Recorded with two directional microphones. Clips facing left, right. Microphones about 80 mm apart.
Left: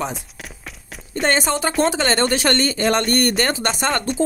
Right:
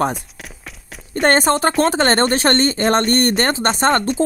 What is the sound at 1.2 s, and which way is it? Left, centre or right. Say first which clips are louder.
Speech: right 5 dB; right.